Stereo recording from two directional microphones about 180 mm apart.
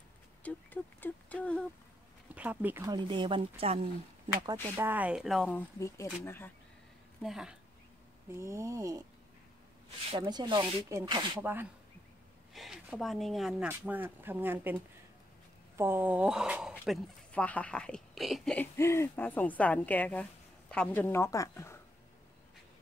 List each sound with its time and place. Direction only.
0.4 s speech: 10° left (ahead or behind)
2.3 s speech: 10° right (ahead or behind); by 3.9 s 35° right (ahead or behind)
4.3 s speech: 20° right (ahead or behind); by 5.5 s centre (ahead or behind)
5.5 s speech: 15° left (ahead or behind)
7.2 s a woman's voice: centre (ahead or behind)
8.3 s speech: 15° right (ahead or behind)
10.1 s speech: 25° right (ahead or behind)
12.5 s speech: 5° right (ahead or behind)
15.8 s speech: 10° right (ahead or behind); by 21.7 s 15° left (ahead or behind)